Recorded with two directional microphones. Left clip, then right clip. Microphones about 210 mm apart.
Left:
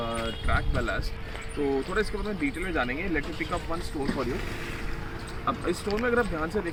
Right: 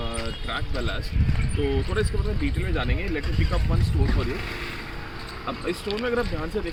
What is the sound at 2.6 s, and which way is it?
Speech, centre (ahead or behind).